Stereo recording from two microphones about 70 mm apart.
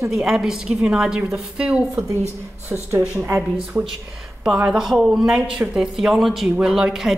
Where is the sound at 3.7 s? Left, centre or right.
Right.